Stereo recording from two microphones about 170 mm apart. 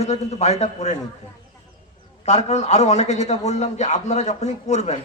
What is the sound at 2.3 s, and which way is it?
A man's voice, 40° left (ahead or behind).